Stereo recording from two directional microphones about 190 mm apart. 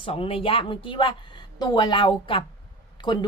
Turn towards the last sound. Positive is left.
turn(degrees=25)  # may be behind; listen again after turning